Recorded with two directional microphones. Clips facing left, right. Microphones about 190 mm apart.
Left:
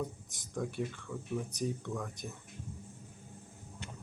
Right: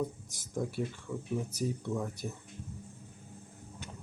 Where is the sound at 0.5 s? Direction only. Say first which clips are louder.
Right 2 dB; 15° right (ahead or behind).